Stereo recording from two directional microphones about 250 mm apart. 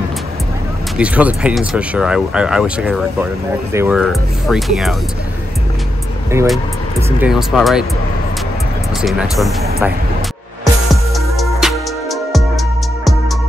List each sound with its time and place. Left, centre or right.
0.9 s speech: centre
6.3 s speech: centre
9.0 s speech: centre
11.1 s music: centre